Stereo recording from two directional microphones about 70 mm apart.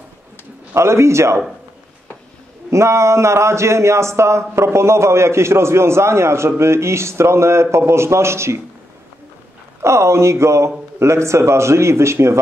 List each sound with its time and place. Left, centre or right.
0.7 s a man's voice: right
2.7 s a man's voice: right
9.8 s a man's voice: right